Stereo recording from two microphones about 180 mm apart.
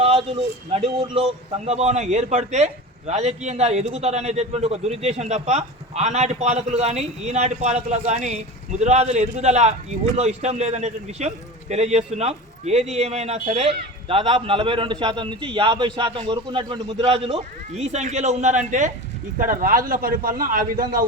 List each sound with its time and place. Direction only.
0.0 s a man's voice: 35° right (ahead or behind); by 20.8 s 50° right (ahead or behind)